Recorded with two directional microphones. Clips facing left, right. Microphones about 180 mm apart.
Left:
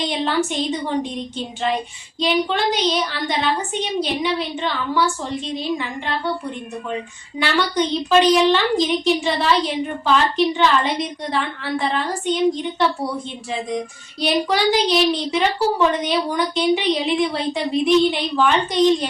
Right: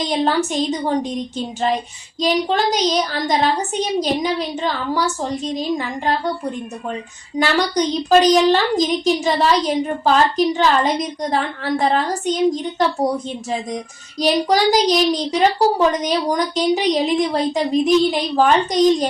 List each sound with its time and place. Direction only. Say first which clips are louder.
0.0 s a woman's voice: right 3 dB; 40° right (ahead or behind)
1.4 s child singing: right 2 dB; 40° right (ahead or behind)
2.2 s a woman's voice: right 2 dB; 40° right (ahead or behind)